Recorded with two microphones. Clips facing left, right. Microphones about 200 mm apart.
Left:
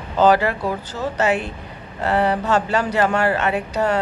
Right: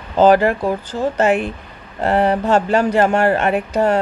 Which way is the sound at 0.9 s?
50° right (ahead or behind).